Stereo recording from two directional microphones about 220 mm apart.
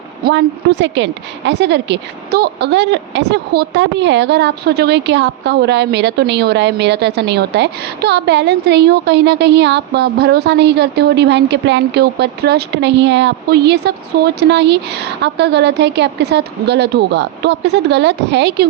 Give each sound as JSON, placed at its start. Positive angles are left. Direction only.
{"t": 0.3, "sound": "a woman's voice", "side_deg": -55}